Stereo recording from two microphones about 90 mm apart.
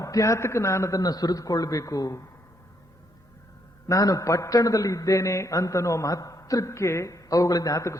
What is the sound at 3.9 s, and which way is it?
A man's voice, 40° left (ahead or behind).